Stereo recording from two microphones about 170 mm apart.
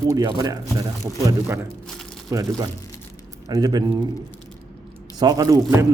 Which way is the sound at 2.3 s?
20° right (ahead or behind).